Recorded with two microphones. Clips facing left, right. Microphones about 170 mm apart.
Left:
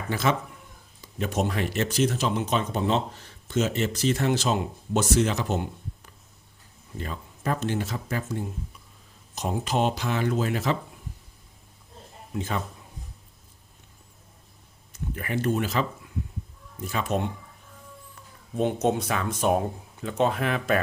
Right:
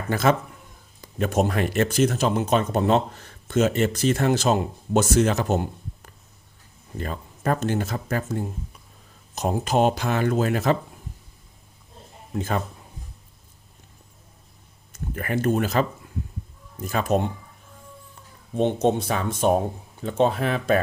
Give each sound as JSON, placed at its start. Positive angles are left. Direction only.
{"t": 0.1, "sound": "speech", "side_deg": -50}
{"t": 12.3, "sound": "speech", "side_deg": -45}
{"t": 14.9, "sound": "speech", "side_deg": -50}
{"t": 18.1, "sound": "speech", "side_deg": -30}